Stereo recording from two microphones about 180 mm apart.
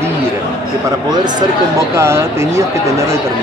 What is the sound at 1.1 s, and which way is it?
Speech, 25° right (ahead or behind).